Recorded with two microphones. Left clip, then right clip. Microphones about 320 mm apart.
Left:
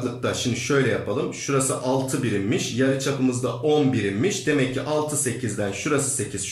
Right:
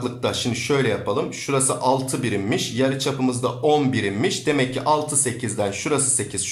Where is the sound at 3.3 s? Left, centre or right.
Centre.